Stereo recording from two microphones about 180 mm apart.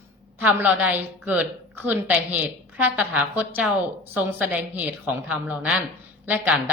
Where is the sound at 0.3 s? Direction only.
10° right (ahead or behind).